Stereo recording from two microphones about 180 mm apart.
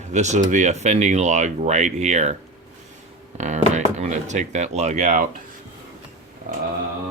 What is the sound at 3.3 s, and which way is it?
Speech, 40° right (ahead or behind).